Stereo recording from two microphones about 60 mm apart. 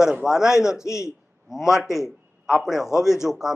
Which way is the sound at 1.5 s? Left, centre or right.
Centre.